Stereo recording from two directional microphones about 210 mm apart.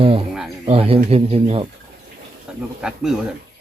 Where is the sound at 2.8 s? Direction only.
5° right (ahead or behind).